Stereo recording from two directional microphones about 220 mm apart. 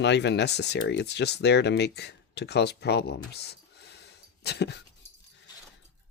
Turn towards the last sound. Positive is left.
turn(degrees=50)  # may be behind; listen again after turning